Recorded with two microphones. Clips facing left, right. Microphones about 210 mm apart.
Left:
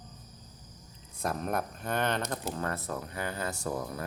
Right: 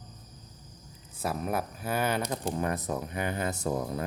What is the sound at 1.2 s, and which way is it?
Speech, 5° right (ahead or behind).